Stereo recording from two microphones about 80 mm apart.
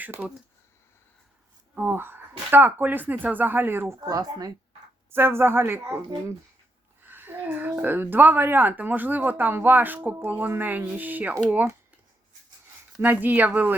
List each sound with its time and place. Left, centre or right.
0.0 s speech: right
1.8 s speech: right
4.0 s speech: right
5.1 s speech: right
13.0 s speech: right